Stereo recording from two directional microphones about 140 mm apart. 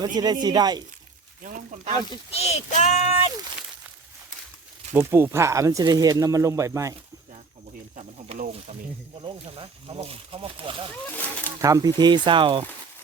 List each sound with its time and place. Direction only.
0.0 s speech: 30° right (ahead or behind)
1.4 s speech: 60° right (ahead or behind)
2.3 s child singing: 50° left (ahead or behind)
4.9 s speech: 15° right (ahead or behind)
8.3 s speech: 45° right (ahead or behind)
11.6 s speech: 25° right (ahead or behind)